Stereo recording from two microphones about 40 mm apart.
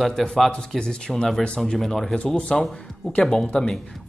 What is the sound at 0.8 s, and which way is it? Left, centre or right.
Speech, centre.